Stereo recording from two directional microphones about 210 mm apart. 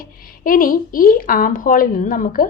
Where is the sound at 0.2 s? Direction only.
45° left (ahead or behind).